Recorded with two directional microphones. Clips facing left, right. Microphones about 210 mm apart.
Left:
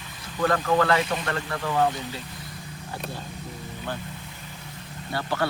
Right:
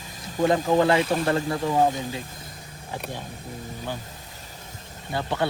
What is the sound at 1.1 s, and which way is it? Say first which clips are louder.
Speech: right 6 dB; 45° right (ahead or behind).